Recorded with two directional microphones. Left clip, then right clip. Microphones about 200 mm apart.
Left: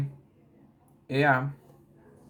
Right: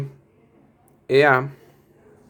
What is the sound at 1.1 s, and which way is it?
Speech, 50° right (ahead or behind).